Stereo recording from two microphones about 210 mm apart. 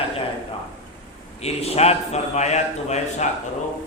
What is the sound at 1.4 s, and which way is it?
Mantra, 30° left (ahead or behind).